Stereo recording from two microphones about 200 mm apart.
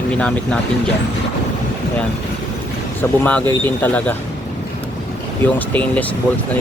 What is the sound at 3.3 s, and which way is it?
Speech, 5° left (ahead or behind).